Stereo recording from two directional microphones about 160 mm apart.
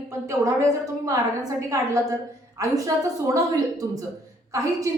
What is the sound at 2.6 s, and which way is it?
A woman's voice, 20° right (ahead or behind).